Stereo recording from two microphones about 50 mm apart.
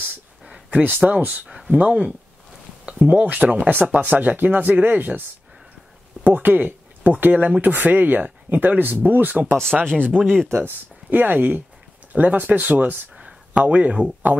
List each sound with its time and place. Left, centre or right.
0.7 s speech: right
6.2 s speech: right
9.7 s speech: centre
10.1 s speech: right
10.5 s speech: right
11.1 s speech: right
13.6 s speech: right